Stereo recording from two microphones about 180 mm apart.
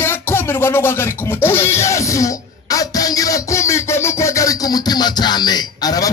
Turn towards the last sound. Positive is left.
turn(degrees=20)  # may be behind; listen again after turning